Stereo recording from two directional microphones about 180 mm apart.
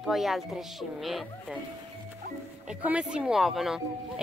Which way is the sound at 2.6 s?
5° right (ahead or behind).